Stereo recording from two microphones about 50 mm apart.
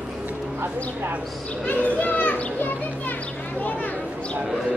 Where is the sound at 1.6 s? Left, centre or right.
Left.